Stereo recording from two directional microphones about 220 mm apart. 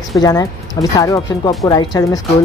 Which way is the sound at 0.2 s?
15° left (ahead or behind).